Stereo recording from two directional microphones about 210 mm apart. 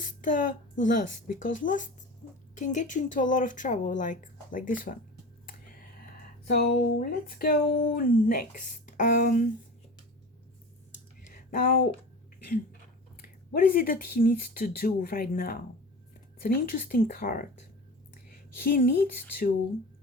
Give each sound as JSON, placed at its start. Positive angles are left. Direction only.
{"t": 0.0, "sound": "a woman's voice", "side_deg": 40}
{"t": 6.5, "sound": "speech", "side_deg": 45}
{"t": 11.3, "sound": "a sound", "side_deg": 40}
{"t": 13.2, "sound": "speech", "side_deg": 40}
{"t": 18.6, "sound": "speech", "side_deg": 40}